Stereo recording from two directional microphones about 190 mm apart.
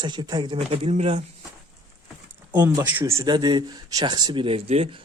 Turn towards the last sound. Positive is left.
turn(degrees=-30)  # may be behind; listen again after turning